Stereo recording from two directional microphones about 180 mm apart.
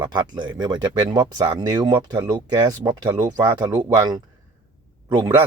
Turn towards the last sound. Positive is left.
turn(degrees=-20)  # may be behind; listen again after turning